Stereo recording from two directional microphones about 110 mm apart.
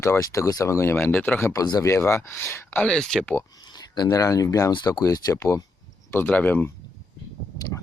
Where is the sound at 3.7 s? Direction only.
40° left (ahead or behind).